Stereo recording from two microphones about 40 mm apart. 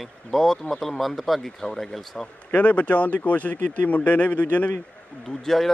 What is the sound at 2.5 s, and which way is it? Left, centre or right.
Speech, left.